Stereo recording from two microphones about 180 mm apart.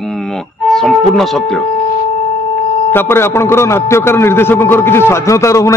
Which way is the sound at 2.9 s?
15° left (ahead or behind).